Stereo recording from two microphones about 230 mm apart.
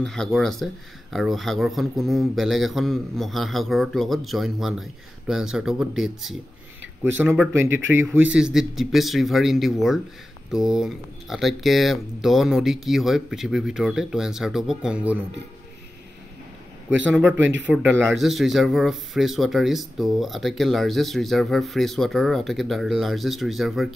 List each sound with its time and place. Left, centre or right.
0.0 s speech: centre
17.1 s speech: centre
17.4 s speech: right
17.8 s speech: centre